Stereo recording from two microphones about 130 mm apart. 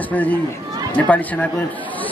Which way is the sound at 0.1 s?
10° left (ahead or behind).